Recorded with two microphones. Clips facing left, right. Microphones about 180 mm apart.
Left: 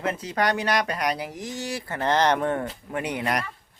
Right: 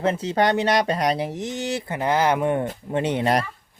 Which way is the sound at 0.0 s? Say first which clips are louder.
Right 5 dB; 25° right (ahead or behind).